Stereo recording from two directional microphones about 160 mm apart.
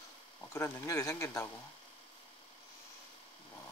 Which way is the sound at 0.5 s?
15° left (ahead or behind).